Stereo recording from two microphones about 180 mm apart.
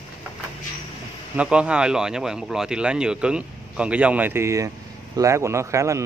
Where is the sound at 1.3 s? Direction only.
5° right (ahead or behind).